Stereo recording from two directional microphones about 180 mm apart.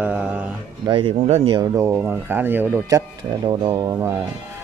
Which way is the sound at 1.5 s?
15° right (ahead or behind).